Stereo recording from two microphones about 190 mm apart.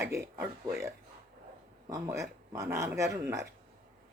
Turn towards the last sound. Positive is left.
turn(degrees=-15)  # may be behind; listen again after turning